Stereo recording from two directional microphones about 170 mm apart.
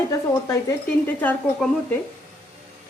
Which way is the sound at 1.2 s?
10° left (ahead or behind).